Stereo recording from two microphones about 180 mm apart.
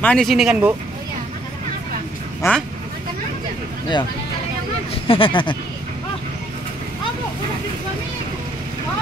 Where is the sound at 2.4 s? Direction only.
15° left (ahead or behind).